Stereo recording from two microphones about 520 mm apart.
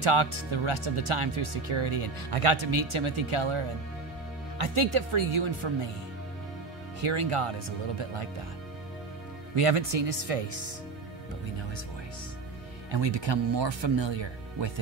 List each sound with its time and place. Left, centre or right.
0.0 s speech: right
7.0 s speech: right
9.6 s speech: right
12.9 s speech: right